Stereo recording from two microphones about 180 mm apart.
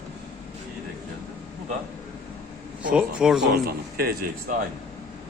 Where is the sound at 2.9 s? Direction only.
5° right (ahead or behind).